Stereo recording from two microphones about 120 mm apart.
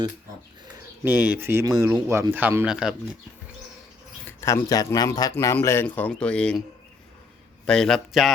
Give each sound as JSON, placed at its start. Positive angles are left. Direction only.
{"t": 1.0, "sound": "speech", "side_deg": -15}
{"t": 2.6, "sound": "speech", "side_deg": -5}
{"t": 4.3, "sound": "speech", "side_deg": 25}
{"t": 7.7, "sound": "a man's voice", "side_deg": 5}